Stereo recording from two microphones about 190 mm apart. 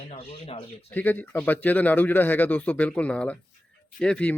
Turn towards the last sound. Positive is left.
turn(degrees=5)  # may be behind; listen again after turning